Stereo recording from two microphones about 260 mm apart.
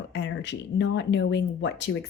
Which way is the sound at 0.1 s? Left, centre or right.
Left.